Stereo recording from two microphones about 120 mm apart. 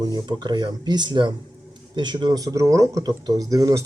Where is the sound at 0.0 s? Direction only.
35° right (ahead or behind).